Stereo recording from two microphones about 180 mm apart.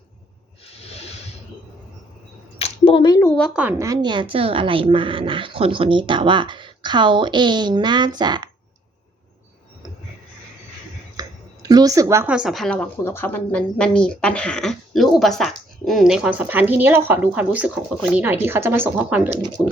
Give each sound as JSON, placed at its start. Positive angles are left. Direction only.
{"t": 0.6, "sound": "snake", "side_deg": 35}
{"t": 2.6, "sound": "a sound", "side_deg": 30}
{"t": 3.3, "sound": "a woman's voice", "side_deg": 5}
{"t": 3.6, "sound": "speech", "side_deg": -15}
{"t": 11.2, "sound": "a sound", "side_deg": -20}
{"t": 12.3, "sound": "a woman's voice", "side_deg": -5}